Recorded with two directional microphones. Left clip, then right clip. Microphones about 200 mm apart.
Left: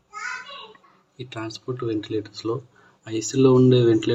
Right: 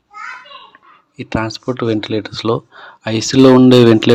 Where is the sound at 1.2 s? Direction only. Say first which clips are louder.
Right 12 dB; 35° right (ahead or behind).